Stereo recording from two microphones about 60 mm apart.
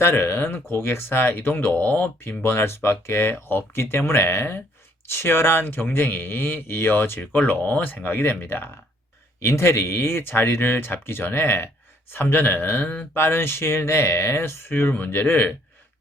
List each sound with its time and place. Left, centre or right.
0.0 s speech: left
2.4 s speech: left
7.2 s speech: left
9.4 s speech: left
13.1 s speech: left